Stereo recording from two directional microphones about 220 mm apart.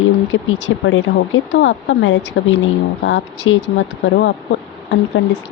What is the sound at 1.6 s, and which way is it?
Speech, 55° left (ahead or behind).